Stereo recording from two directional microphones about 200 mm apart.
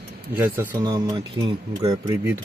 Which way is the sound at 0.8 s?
20° right (ahead or behind).